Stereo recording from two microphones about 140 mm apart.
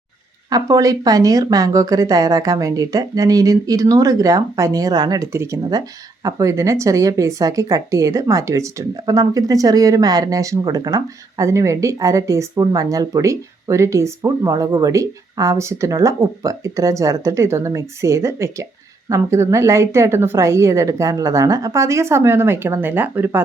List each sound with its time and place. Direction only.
0.5 s speech: 25° right (ahead or behind)